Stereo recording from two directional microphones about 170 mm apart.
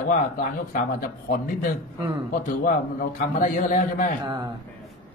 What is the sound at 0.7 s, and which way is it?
Speech, 55° left (ahead or behind).